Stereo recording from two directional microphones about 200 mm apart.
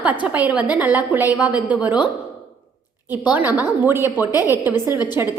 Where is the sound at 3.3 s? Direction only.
10° right (ahead or behind).